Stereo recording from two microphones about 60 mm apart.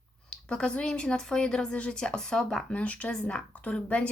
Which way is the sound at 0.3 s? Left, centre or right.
Centre.